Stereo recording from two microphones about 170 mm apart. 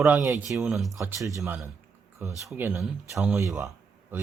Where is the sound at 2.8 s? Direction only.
Centre (ahead or behind).